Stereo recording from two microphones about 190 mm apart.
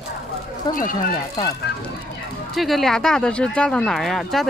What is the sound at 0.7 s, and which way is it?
Speech, 45° left (ahead or behind).